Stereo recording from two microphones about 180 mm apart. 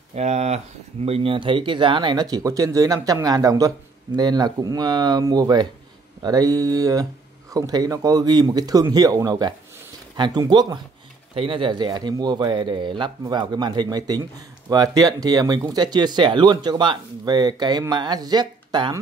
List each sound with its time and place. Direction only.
0.1 s speech: 40° right (ahead or behind)